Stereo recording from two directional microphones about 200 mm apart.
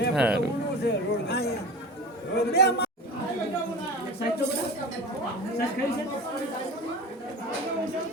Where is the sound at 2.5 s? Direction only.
55° left (ahead or behind).